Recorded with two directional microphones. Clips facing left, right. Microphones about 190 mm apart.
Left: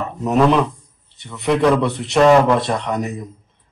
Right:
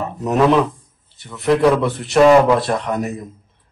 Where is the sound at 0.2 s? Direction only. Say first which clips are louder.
Even; centre (ahead or behind).